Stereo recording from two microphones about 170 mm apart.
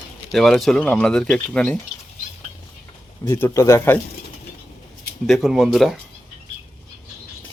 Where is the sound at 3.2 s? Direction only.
15° left (ahead or behind).